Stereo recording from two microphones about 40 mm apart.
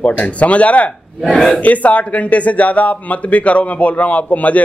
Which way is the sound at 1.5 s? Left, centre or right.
Left.